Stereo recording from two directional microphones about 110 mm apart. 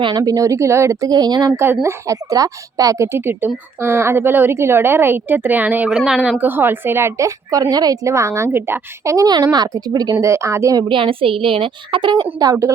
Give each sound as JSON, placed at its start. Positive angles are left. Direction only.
{"t": 0.0, "sound": "speech", "side_deg": -40}
{"t": 1.5, "sound": "a woman's voice", "side_deg": -20}
{"t": 6.0, "sound": "speech", "side_deg": -5}
{"t": 6.4, "sound": "a woman's voice", "side_deg": -20}
{"t": 10.8, "sound": "a woman's voice", "side_deg": -50}